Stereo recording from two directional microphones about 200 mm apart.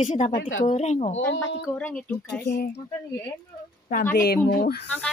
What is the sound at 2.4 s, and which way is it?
Speech, 55° left (ahead or behind).